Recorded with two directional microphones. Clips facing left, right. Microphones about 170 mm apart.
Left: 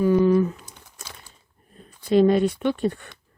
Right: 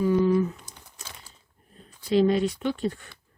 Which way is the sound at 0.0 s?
65° left (ahead or behind).